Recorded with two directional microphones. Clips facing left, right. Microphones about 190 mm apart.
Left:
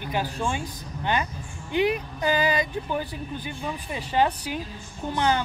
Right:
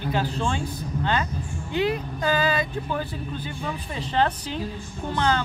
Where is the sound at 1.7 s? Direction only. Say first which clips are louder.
Left 1 dB; 15° left (ahead or behind).